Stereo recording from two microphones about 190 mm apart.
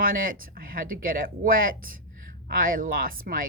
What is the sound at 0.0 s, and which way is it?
A woman's voice, 50° right (ahead or behind).